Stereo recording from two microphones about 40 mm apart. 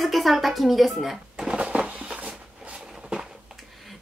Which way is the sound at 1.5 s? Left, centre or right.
Right.